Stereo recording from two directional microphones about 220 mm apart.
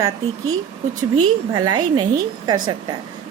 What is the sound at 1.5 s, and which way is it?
A woman's voice, 20° right (ahead or behind).